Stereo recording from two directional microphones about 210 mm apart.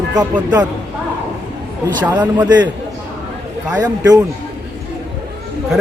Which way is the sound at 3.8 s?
15° right (ahead or behind).